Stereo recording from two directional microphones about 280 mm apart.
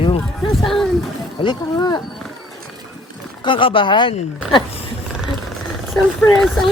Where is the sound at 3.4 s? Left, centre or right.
Centre.